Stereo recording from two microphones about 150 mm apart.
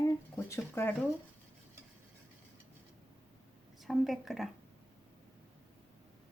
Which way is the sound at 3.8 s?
Centre (ahead or behind).